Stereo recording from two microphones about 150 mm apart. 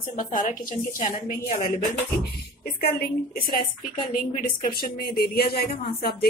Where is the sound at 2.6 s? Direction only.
90° left.